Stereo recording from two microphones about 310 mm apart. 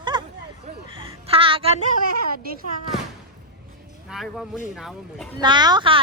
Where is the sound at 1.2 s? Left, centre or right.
Centre.